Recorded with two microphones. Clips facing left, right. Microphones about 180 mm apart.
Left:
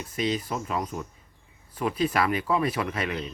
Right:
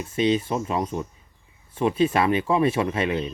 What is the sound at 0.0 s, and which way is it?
Speech, 25° right (ahead or behind).